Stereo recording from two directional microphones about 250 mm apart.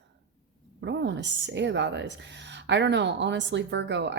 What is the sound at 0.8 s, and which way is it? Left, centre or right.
A woman's voice, right.